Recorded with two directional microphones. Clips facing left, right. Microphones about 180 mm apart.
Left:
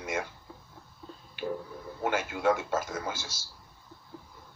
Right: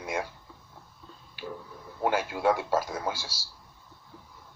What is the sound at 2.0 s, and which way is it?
A man's voice, 35° right (ahead or behind).